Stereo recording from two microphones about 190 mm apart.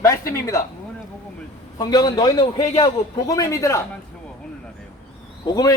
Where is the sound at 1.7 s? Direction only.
20° left (ahead or behind).